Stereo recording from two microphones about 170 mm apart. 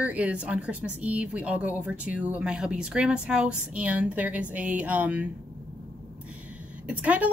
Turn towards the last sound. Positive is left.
turn(degrees=-10)  # may be behind; listen again after turning